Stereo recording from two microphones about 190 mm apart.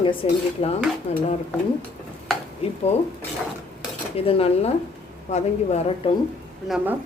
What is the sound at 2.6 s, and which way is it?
Speech, 30° left (ahead or behind).